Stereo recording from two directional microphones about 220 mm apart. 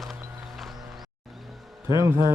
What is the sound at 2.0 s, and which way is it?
Speech, 15° right (ahead or behind).